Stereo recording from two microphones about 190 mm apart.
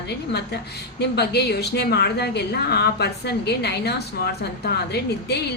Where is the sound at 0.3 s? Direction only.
60° left (ahead or behind).